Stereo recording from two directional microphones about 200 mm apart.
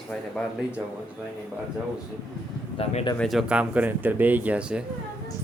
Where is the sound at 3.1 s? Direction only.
Centre (ahead or behind).